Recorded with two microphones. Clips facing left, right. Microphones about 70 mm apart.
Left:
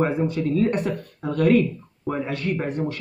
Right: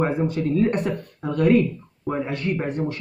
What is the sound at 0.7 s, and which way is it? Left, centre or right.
Speech, right.